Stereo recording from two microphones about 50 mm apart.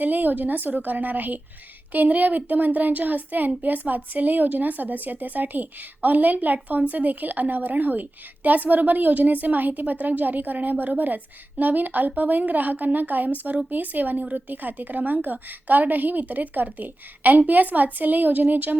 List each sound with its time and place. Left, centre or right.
0.0 s a woman's voice: right